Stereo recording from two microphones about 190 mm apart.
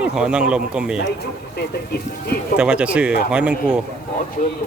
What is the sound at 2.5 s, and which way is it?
A man's voice, 5° right (ahead or behind).